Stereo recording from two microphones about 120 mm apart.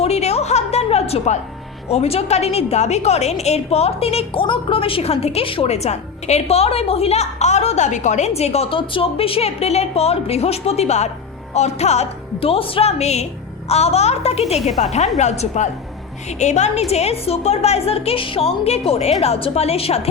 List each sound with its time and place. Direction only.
0.0 s music: 60° left (ahead or behind)
1.9 s a woman's voice: 60° left (ahead or behind)